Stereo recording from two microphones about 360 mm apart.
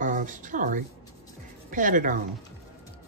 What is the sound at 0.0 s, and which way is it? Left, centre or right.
A woman's voice, right.